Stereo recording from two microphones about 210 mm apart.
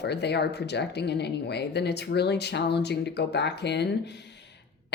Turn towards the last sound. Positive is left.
turn(degrees=55)  # may be behind; listen again after turning